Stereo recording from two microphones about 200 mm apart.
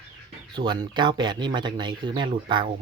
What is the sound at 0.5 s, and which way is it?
Speech, 20° right (ahead or behind).